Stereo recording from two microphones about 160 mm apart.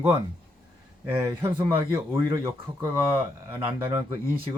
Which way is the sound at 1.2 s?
15° right (ahead or behind).